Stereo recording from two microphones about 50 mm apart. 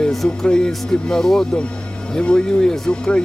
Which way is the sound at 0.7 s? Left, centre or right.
Centre.